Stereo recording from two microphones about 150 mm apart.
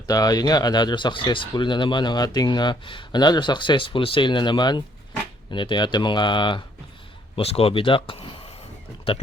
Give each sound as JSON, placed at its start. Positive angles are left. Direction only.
{"t": 0.1, "sound": "speech", "side_deg": 25}